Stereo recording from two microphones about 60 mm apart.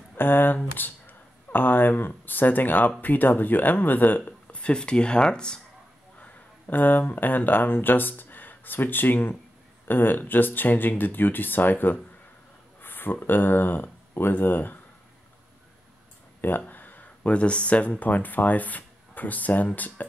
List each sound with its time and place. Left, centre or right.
0.1 s speech: left; by 5.6 s centre
6.1 s speech: left
16.3 s speech: left